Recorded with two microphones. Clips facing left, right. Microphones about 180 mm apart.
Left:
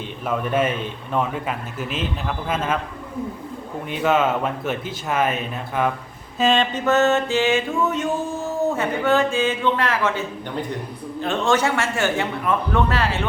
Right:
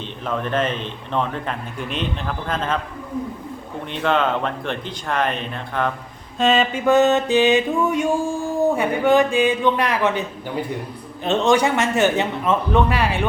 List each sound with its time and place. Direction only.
0.3 s a man's voice: 10° left (ahead or behind)
3.9 s a man's voice: 5° left (ahead or behind)
6.4 s mantra: 5° right (ahead or behind)